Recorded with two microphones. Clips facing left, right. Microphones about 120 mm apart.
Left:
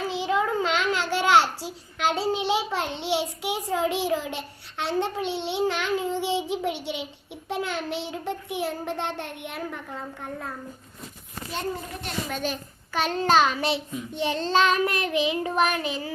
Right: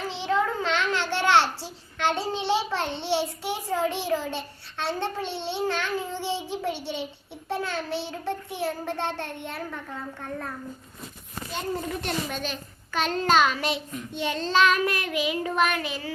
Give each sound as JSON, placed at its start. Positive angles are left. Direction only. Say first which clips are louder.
{"t": 0.1, "sound": "a child's voice", "louder": "even", "side_deg": 10}
{"t": 7.4, "sound": "child singing", "louder": "left 1 dB", "side_deg": 15}
{"t": 12.3, "sound": "a child's voice", "louder": "left 3 dB", "side_deg": 10}
{"t": 13.4, "sound": "child singing", "louder": "left 1 dB", "side_deg": 25}